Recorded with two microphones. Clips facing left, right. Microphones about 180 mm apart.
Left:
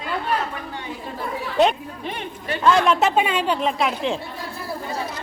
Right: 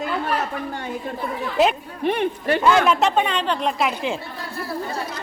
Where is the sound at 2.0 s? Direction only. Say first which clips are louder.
Right 9 dB; 60° right (ahead or behind).